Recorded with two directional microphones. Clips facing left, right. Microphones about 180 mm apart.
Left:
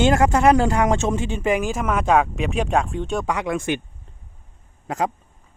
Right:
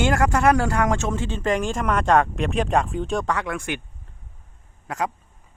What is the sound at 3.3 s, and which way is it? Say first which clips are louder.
Speech: left 3 dB; 15° left (ahead or behind).